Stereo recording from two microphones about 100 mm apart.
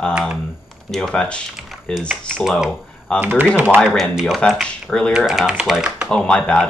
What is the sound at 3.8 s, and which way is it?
Speech, centre (ahead or behind).